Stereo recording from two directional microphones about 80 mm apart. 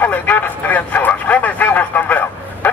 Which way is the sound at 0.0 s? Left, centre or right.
Centre.